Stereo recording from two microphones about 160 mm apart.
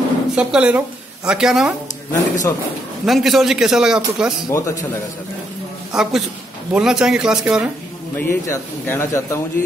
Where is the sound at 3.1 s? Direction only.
Centre (ahead or behind).